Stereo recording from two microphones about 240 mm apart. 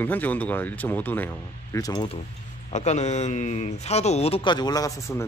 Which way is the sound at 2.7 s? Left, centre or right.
Left.